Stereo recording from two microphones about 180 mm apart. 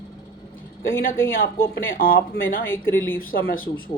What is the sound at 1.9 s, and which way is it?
Speech, 55° left (ahead or behind).